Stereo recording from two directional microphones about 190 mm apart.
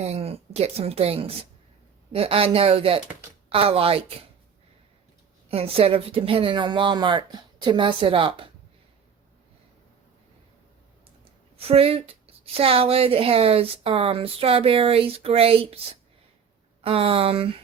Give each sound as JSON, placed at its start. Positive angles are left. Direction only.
{"t": 0.0, "sound": "a woman's voice", "side_deg": -35}
{"t": 5.5, "sound": "speech", "side_deg": -30}
{"t": 11.5, "sound": "a woman's voice", "side_deg": -30}